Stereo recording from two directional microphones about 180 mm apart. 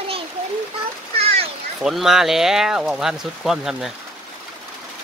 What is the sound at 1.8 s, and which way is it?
Speech, centre (ahead or behind).